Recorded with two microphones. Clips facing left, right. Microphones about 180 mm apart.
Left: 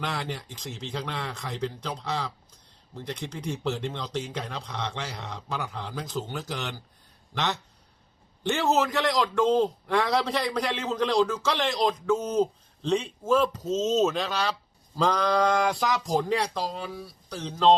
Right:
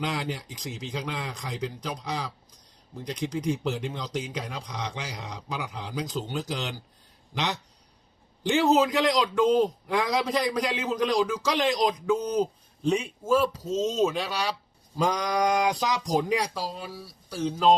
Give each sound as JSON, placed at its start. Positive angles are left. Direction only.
{"t": 0.0, "sound": "a man's voice", "side_deg": -15}
{"t": 8.7, "sound": "a man's voice", "side_deg": -15}